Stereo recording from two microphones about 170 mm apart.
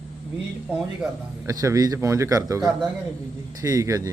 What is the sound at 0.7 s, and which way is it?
A man's voice, 10° right (ahead or behind).